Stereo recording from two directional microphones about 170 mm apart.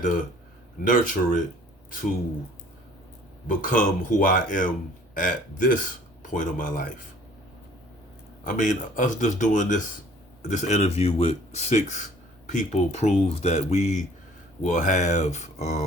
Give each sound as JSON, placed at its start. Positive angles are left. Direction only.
{"t": 0.8, "sound": "speech", "side_deg": 50}
{"t": 3.4, "sound": "speech", "side_deg": 50}
{"t": 8.4, "sound": "speech", "side_deg": 50}